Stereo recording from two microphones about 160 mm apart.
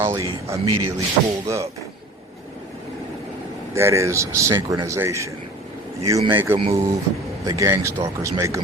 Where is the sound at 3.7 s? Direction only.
15° right (ahead or behind).